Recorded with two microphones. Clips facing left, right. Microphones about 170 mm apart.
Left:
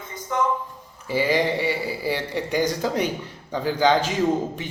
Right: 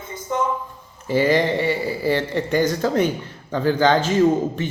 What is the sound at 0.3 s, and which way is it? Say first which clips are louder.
Speech: right 1 dB; 30° right (ahead or behind).